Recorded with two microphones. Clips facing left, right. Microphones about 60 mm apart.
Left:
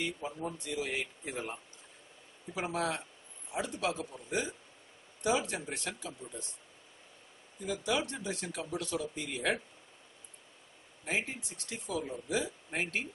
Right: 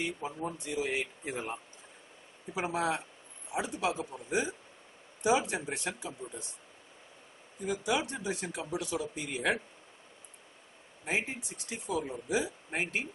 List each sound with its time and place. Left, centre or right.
0.0 s speech: centre
7.6 s speech: centre
11.1 s speech: centre